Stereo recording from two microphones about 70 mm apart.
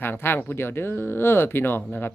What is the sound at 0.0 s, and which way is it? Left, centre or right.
Speech, left.